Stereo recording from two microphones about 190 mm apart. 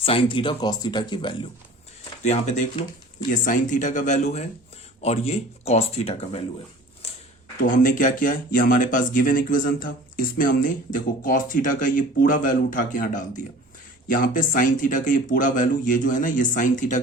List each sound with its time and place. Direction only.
0.0 s speech: 30° left (ahead or behind)
2.2 s speech: 40° left (ahead or behind)
7.0 s a sound: 30° left (ahead or behind)
7.6 s speech: 45° left (ahead or behind)